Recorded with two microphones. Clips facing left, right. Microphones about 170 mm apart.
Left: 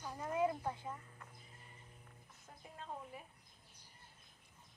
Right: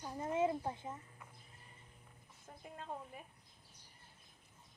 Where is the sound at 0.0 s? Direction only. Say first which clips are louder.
Right 1 dB; 25° right (ahead or behind).